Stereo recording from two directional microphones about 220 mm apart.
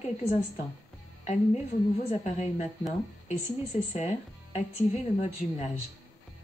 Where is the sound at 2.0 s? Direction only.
35° left (ahead or behind).